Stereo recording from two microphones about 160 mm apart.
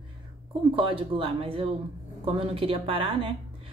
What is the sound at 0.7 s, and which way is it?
Speech, 35° right (ahead or behind).